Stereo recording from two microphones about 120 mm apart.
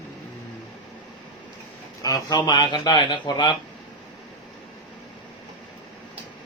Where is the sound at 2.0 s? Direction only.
30° left (ahead or behind).